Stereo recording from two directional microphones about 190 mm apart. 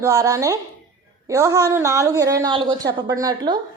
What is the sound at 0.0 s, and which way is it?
A woman's voice, 15° right (ahead or behind).